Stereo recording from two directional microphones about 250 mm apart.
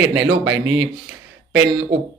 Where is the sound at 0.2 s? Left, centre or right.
Right.